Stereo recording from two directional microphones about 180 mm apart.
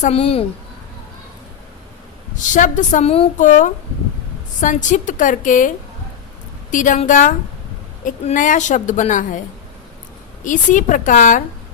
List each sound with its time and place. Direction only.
0.0 s a woman's voice: 35° left (ahead or behind)
2.5 s a woman's voice: 45° left (ahead or behind)
10.4 s a woman's voice: 45° left (ahead or behind)